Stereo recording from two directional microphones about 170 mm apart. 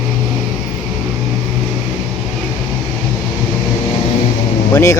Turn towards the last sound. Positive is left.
turn(degrees=15)  # may be behind; listen again after turning